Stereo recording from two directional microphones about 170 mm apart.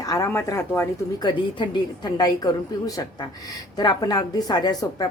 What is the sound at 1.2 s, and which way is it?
A woman's voice, 25° left (ahead or behind).